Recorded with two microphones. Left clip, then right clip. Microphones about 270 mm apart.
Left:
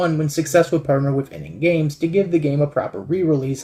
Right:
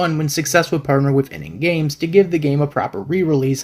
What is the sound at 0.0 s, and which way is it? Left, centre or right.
Speech, right.